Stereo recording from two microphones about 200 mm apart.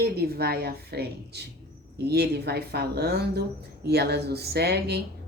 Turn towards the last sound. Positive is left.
turn(degrees=-55)  # may be behind; listen again after turning